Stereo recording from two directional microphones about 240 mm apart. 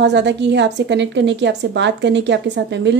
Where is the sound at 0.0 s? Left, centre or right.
Right.